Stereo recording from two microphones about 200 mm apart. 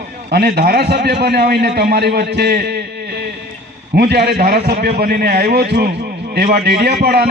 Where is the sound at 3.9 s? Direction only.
50° right (ahead or behind).